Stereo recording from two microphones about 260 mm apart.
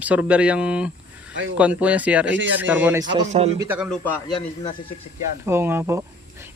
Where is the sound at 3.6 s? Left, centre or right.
Centre.